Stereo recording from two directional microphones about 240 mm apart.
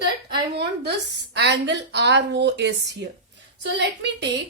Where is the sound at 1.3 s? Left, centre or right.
Right.